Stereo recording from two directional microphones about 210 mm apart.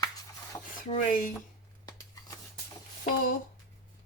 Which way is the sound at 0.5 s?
15° left (ahead or behind).